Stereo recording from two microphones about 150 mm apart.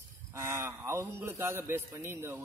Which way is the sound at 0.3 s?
20° right (ahead or behind).